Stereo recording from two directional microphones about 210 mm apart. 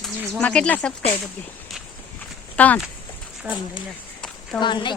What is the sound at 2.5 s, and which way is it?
Speech, 5° left (ahead or behind).